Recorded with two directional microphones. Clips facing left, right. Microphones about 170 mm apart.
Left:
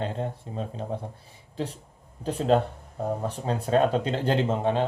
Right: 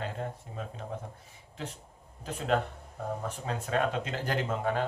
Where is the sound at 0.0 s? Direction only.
25° left (ahead or behind).